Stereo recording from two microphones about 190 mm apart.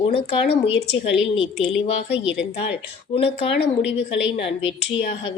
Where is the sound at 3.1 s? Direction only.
30° left (ahead or behind).